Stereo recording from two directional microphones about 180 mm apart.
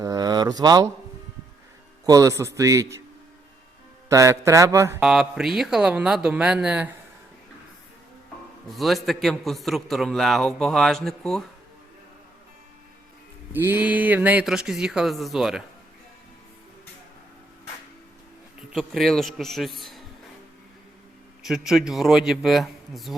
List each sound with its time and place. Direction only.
0.0 s a sound: 20° right (ahead or behind)
2.0 s a man's voice: 20° right (ahead or behind)
4.1 s a man's voice: 15° right (ahead or behind)
4.9 s a man's voice: 5° right (ahead or behind)
8.7 s a man's voice: centre (ahead or behind)
13.5 s a man's voice: 10° right (ahead or behind)
18.7 s a man's voice: centre (ahead or behind)
21.4 s a man's voice: centre (ahead or behind)